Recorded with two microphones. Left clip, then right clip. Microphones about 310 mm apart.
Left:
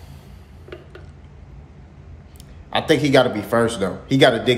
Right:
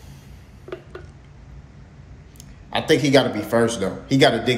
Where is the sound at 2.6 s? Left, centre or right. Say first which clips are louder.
Left 1 dB; centre.